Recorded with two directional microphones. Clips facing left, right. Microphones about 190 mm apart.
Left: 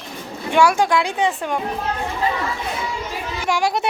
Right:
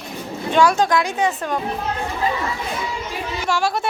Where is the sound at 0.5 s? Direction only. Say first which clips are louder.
Even; 10° left (ahead or behind).